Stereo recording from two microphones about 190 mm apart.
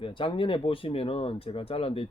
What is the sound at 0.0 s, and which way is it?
Speech, 25° left (ahead or behind).